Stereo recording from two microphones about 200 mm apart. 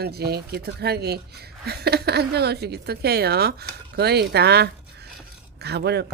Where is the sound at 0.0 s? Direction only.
50° right (ahead or behind).